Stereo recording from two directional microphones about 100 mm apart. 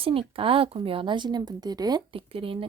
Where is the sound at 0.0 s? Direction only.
65° right (ahead or behind); by 2.0 s 40° right (ahead or behind).